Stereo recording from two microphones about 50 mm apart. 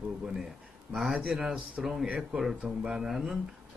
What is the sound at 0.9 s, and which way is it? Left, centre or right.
Speech, centre.